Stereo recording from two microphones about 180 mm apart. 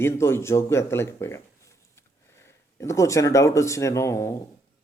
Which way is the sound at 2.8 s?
15° left (ahead or behind).